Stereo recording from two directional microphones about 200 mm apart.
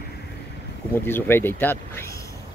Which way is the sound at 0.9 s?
10° left (ahead or behind).